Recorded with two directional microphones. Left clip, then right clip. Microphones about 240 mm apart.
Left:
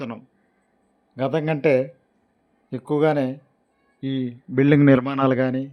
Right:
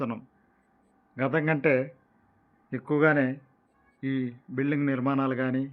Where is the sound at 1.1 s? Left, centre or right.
Centre.